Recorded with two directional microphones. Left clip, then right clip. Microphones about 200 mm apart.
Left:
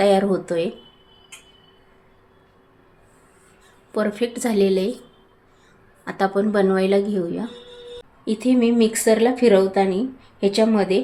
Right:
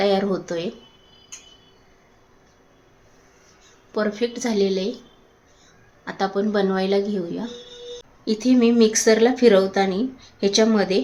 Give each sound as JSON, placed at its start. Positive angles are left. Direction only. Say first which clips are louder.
{"t": 0.0, "sound": "a woman's voice", "louder": "left 3 dB", "side_deg": 15}
{"t": 3.9, "sound": "a woman's voice", "louder": "left 1 dB", "side_deg": 20}
{"t": 6.1, "sound": "a woman's voice", "louder": "left 2 dB", "side_deg": 20}
{"t": 8.2, "sound": "speech", "louder": "right 1 dB", "side_deg": 5}